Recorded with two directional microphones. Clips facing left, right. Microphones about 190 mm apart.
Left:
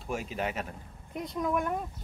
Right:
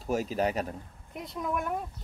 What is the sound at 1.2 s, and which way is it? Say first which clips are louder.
Speech: left 3 dB; centre (ahead or behind).